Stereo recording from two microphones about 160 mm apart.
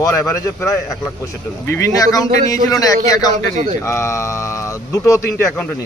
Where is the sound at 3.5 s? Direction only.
45° right (ahead or behind).